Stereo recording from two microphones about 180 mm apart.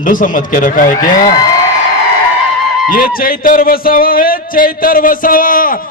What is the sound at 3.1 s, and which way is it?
Speech, 55° left (ahead or behind).